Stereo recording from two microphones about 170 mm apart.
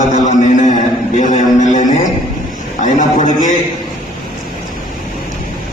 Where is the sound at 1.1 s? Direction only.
45° left (ahead or behind).